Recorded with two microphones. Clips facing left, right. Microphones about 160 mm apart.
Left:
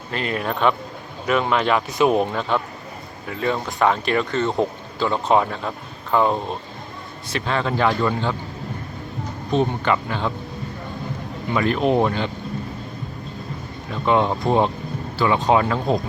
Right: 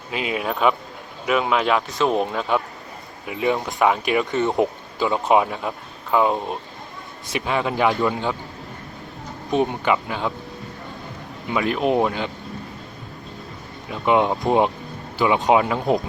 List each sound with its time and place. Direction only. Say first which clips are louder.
0.1 s speech: even; 5° right (ahead or behind)
1.9 s speech: left 3 dB; 15° left (ahead or behind)
2.1 s speech: left 1 dB; centre (ahead or behind)
3.2 s speech: right 2 dB; 15° right (ahead or behind)
9.5 s speech: even; 15° right (ahead or behind)
11.5 s speech: left 1 dB; 5° right (ahead or behind)
13.9 s speech: even; 10° right (ahead or behind)